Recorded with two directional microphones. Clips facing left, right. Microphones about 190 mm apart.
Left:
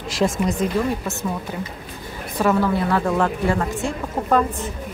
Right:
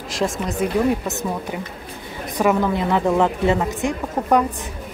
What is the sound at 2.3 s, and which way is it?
A woman's voice, 15° right (ahead or behind).